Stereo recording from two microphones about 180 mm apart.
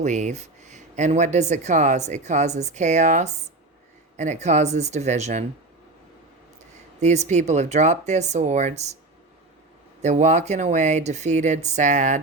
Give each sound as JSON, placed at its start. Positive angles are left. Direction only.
{"t": 0.0, "sound": "speech", "side_deg": -40}
{"t": 7.0, "sound": "speech", "side_deg": -40}
{"t": 10.0, "sound": "speech", "side_deg": -40}